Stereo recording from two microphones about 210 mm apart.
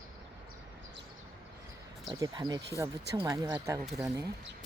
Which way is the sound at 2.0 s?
15° right (ahead or behind).